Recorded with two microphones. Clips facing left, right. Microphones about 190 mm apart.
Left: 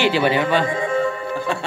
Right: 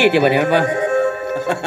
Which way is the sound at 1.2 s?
70° right (ahead or behind).